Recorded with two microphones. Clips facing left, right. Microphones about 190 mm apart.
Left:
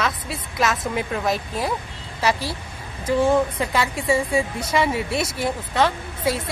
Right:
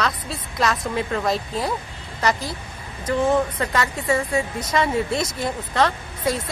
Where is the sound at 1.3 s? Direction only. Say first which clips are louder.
Even; 25° right (ahead or behind).